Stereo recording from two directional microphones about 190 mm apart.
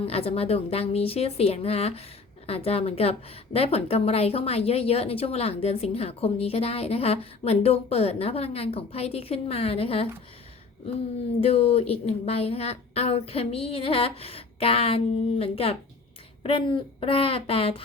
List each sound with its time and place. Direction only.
0.0 s a woman's voice: 30° left (ahead or behind)
11.4 s a woman's voice: 30° left (ahead or behind)